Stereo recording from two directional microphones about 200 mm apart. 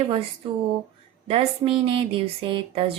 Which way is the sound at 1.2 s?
30° right (ahead or behind).